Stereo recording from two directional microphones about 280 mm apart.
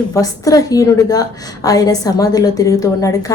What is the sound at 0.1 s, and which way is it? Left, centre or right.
A woman's voice, centre.